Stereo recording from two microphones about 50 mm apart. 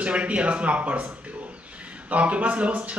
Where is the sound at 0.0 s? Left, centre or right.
Right.